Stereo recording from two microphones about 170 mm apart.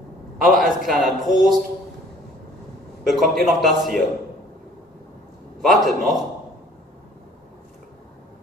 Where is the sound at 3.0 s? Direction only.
Centre (ahead or behind).